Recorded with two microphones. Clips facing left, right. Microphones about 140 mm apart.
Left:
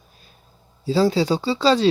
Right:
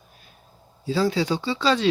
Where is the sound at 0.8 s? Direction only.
30° left (ahead or behind).